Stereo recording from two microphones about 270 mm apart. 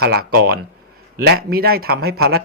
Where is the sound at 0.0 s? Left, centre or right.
Right.